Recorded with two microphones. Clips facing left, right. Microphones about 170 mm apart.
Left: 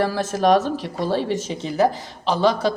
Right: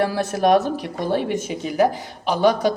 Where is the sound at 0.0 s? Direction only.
15° right (ahead or behind).